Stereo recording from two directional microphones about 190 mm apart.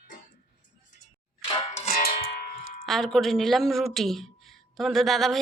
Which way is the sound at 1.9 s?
55° left (ahead or behind).